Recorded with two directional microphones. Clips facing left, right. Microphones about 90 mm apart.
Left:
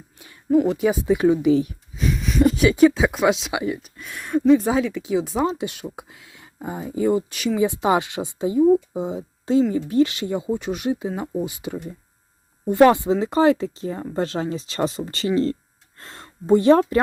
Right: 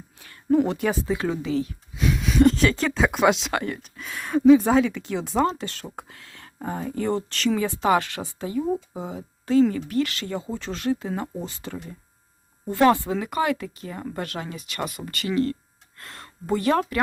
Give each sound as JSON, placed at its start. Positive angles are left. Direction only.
{"t": 0.5, "sound": "speech", "side_deg": 5}
{"t": 1.0, "sound": "speech", "side_deg": 20}
{"t": 2.0, "sound": "speech", "side_deg": 0}
{"t": 5.5, "sound": "speech", "side_deg": 15}